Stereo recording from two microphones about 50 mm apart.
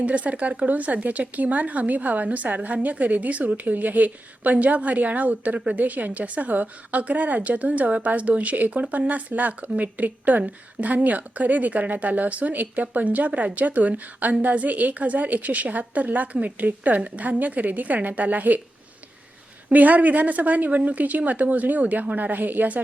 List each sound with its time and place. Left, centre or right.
0.0 s a woman's voice: right
19.7 s a woman's voice: right